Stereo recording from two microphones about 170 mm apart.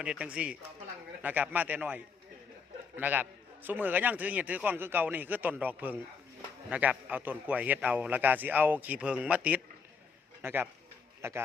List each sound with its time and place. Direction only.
0.0 s a man's voice: 5° right (ahead or behind)